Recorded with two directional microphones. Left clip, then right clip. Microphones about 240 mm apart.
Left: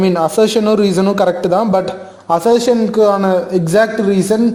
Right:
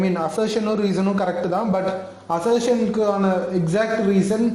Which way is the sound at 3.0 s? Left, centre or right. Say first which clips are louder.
Left 12 dB; centre.